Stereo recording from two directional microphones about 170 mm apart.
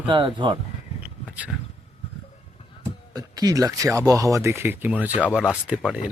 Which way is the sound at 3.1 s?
20° right (ahead or behind).